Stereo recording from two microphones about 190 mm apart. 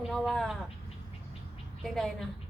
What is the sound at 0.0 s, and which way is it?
Speech, centre (ahead or behind).